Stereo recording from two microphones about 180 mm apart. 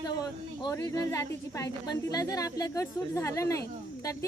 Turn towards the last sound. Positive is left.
turn(degrees=15)  # may be behind; listen again after turning